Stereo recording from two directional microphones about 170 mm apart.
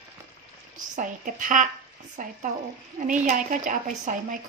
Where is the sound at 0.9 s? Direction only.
50° right (ahead or behind).